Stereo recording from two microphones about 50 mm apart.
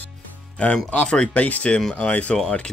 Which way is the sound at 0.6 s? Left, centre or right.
Left.